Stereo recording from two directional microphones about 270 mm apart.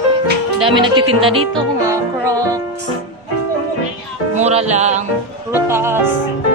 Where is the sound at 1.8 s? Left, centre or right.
Centre.